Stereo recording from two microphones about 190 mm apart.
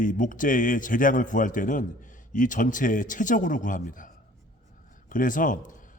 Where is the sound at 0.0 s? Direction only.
45° left (ahead or behind).